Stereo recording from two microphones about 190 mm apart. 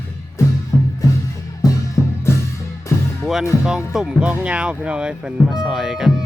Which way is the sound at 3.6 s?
5° right (ahead or behind).